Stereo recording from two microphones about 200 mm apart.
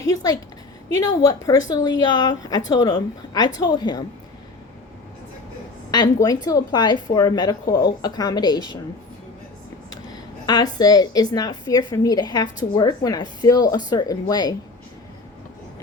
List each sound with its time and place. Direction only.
0.0 s a woman's voice: 15° left (ahead or behind)
5.9 s a woman's voice: 20° left (ahead or behind)
10.4 s a woman's voice: 20° left (ahead or behind)